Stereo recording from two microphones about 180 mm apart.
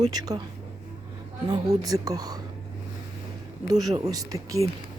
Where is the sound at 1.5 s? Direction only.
25° right (ahead or behind).